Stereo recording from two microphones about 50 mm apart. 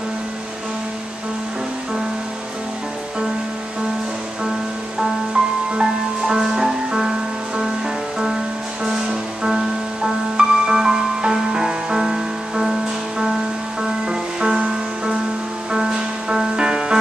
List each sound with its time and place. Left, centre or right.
4.5 s music: centre
8.8 s music: centre
13.8 s music: centre
15.7 s music: centre